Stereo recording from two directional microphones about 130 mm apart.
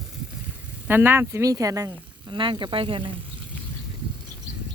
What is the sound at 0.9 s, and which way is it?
Speech, 15° right (ahead or behind).